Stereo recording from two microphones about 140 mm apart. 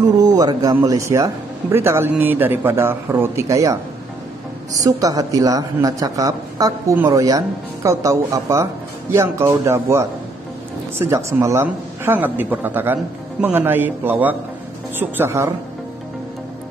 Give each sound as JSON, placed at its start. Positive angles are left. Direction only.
{"t": 0.0, "sound": "a woman's voice", "side_deg": -25}
{"t": 4.7, "sound": "a woman's voice", "side_deg": -25}